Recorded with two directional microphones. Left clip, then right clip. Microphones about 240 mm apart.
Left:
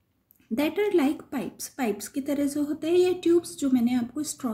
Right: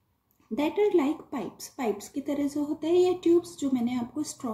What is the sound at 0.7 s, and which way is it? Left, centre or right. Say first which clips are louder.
A woman's voice: right 1 dB; left.